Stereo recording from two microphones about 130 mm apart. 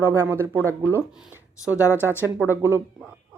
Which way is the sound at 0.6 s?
15° left (ahead or behind).